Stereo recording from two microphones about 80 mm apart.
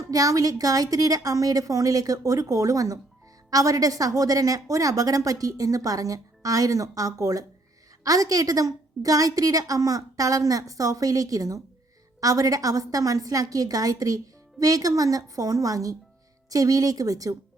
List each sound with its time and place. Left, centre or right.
0.0 s a woman's voice: right